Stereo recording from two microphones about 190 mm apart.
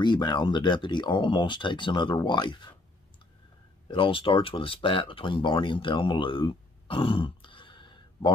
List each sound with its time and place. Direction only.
0.0 s speech: 25° left (ahead or behind)
3.8 s speech: 25° left (ahead or behind)